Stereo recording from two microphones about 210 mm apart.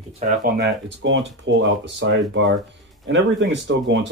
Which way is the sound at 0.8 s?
60° right (ahead or behind).